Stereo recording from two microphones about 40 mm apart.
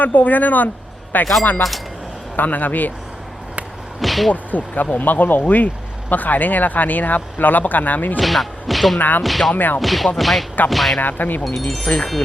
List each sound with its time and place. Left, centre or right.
0.0 s speech: left
2.3 s speech: left
4.0 s speech: centre
4.3 s speech: left
8.2 s speech: centre
9.0 s speech: left
9.2 s speech: centre
9.6 s speech: left
9.8 s speech: centre
11.0 s speech: left
11.9 s chime: left